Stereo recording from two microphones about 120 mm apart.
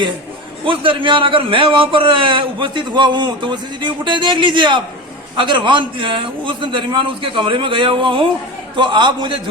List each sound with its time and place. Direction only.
0.6 s a man's voice: 45° right (ahead or behind)